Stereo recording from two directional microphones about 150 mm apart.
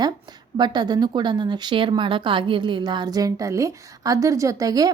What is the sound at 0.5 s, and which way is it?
Speech, 30° right (ahead or behind).